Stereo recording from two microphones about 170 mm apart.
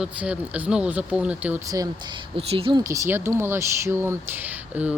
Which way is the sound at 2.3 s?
30° right (ahead or behind).